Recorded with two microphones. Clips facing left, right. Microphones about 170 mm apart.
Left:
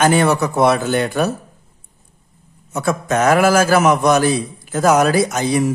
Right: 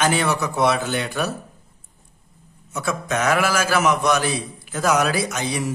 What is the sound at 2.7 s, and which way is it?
A man's voice, 45° left (ahead or behind).